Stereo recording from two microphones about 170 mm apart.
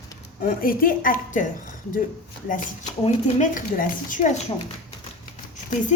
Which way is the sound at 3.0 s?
40° left (ahead or behind).